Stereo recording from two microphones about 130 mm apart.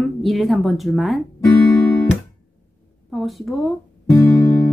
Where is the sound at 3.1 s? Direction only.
Centre (ahead or behind).